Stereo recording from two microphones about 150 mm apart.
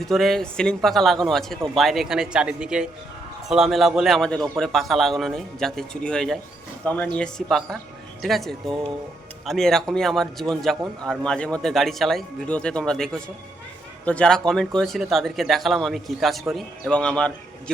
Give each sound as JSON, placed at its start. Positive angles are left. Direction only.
{"t": 0.0, "sound": "a man's voice", "side_deg": 0}